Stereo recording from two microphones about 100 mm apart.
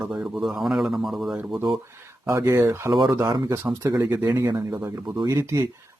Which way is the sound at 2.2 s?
30° right (ahead or behind).